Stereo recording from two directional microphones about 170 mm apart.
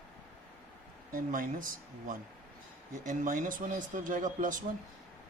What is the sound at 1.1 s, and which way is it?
Speech, 55° right (ahead or behind).